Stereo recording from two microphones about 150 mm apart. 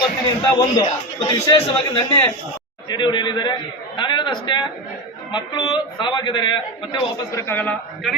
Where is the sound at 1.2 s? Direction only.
20° left (ahead or behind).